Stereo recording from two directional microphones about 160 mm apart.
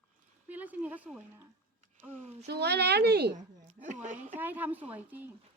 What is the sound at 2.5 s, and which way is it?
Speech, 90° right.